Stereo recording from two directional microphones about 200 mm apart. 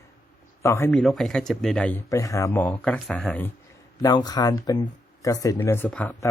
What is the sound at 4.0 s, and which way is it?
Speech, 20° left (ahead or behind).